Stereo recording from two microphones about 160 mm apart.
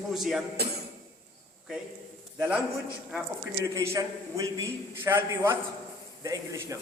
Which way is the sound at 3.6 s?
20° right (ahead or behind).